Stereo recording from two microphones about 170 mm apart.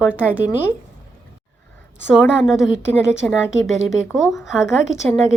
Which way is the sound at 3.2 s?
5° left (ahead or behind).